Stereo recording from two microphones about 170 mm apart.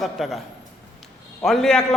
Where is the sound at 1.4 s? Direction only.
Centre (ahead or behind).